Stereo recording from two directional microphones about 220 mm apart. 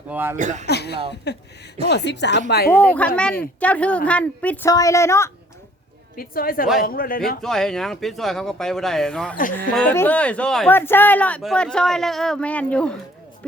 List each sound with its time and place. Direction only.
0.1 s a man's voice: 10° right (ahead or behind)
0.3 s a man's voice: 35° right (ahead or behind)
0.7 s speech: 50° left (ahead or behind)
2.7 s a woman's voice: 5° left (ahead or behind)
6.1 s a woman's voice: 40° left (ahead or behind)
7.4 s speech: centre (ahead or behind)